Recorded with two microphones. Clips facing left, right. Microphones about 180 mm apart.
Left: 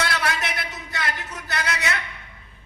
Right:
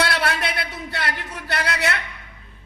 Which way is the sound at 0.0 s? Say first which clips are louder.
Right 3 dB; 60° right (ahead or behind).